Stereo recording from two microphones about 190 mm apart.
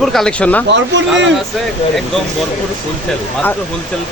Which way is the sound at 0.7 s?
70° right (ahead or behind).